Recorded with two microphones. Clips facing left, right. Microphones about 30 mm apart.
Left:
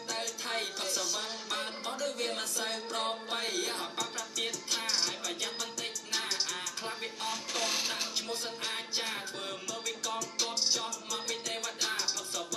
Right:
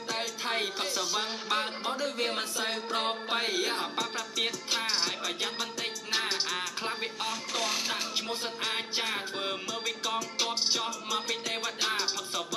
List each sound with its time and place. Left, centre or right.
0.1 s music: right
7.2 s speech: centre
8.3 s music: right